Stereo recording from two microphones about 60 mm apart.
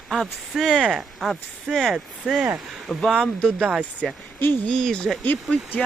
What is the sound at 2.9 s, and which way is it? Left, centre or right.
Speech, centre.